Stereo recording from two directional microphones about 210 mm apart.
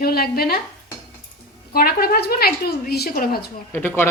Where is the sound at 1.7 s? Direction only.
45° left (ahead or behind).